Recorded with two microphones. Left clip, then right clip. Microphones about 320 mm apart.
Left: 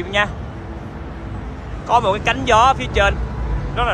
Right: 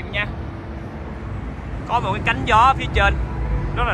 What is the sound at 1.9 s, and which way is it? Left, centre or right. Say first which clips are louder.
A man's voice: left 5 dB; centre.